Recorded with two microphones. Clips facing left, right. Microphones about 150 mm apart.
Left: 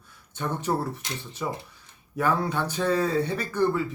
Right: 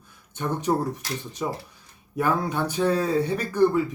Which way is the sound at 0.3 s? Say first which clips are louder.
Right 2 dB; 15° right (ahead or behind).